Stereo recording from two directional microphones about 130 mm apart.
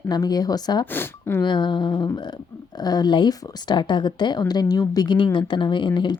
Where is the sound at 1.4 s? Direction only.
35° left (ahead or behind).